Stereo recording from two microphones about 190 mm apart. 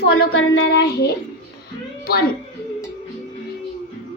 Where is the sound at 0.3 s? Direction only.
85° left; by 1.1 s 60° left (ahead or behind).